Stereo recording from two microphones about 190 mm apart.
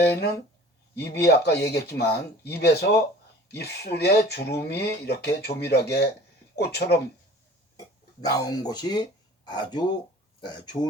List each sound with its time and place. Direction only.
0.0 s speech: 55° left (ahead or behind)
7.8 s speech: 20° left (ahead or behind)